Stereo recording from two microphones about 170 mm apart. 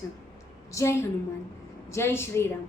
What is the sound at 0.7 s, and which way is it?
A woman's voice, 20° left (ahead or behind).